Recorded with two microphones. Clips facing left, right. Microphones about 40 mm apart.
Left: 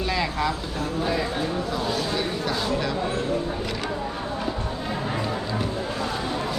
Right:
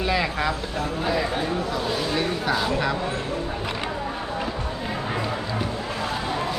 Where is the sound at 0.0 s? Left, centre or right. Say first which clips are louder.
Right 1 dB; centre.